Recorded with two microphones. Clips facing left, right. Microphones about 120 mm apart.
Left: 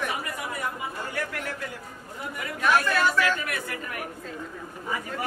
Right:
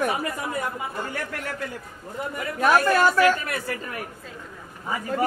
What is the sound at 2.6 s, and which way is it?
Speech, 40° right (ahead or behind).